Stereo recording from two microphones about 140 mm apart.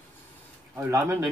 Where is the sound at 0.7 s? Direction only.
20° right (ahead or behind).